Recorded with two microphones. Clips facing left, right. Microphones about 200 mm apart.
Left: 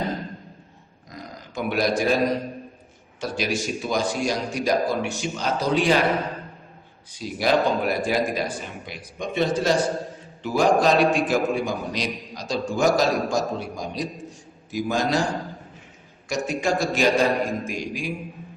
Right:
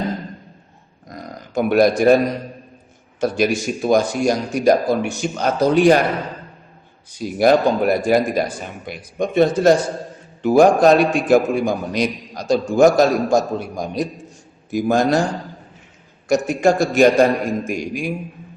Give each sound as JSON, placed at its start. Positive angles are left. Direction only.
{"t": 1.1, "sound": "a sound", "side_deg": -50}
{"t": 3.2, "sound": "a man's voice", "side_deg": -50}
{"t": 7.2, "sound": "a man's voice", "side_deg": -50}
{"t": 16.3, "sound": "a man's voice", "side_deg": -50}